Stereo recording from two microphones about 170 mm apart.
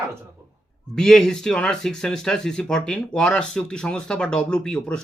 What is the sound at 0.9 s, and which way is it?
Speech, 5° left (ahead or behind).